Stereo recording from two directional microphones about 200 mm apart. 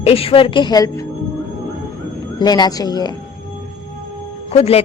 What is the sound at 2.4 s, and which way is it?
Speech, 20° left (ahead or behind).